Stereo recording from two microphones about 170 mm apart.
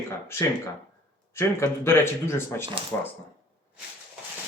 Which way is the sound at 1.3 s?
15° left (ahead or behind).